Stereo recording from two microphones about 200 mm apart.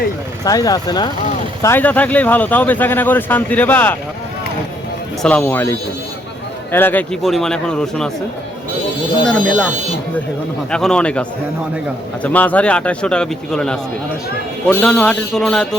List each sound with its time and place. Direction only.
0.4 s speech: 20° left (ahead or behind)
1.6 s speech: 10° left (ahead or behind)
5.2 s a man's voice: 5° left (ahead or behind)
9.2 s a man's voice: 5° left (ahead or behind)